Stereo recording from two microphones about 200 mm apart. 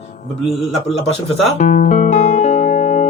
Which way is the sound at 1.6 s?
40° left (ahead or behind).